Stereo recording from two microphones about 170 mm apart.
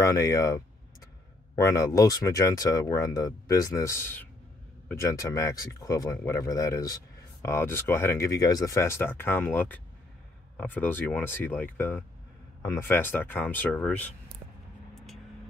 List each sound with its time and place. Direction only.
0.0 s speech: 20° left (ahead or behind)